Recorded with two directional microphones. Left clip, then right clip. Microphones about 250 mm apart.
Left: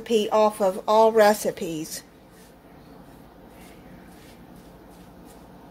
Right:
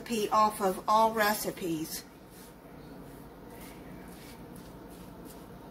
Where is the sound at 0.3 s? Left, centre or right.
Left.